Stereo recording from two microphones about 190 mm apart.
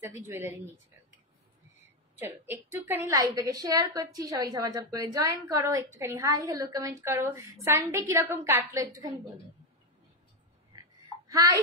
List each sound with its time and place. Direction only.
0.0 s a woman's voice: 15° right (ahead or behind)
1.8 s a sound: 10° right (ahead or behind)
2.7 s a woman's voice: 10° right (ahead or behind)
11.2 s a child's voice: 20° right (ahead or behind)